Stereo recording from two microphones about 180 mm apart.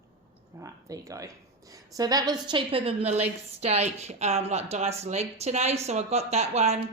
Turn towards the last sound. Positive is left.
turn(degrees=-35)  # may be behind; listen again after turning